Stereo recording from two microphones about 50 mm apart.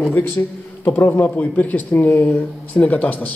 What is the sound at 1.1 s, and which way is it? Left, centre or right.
Speech, left.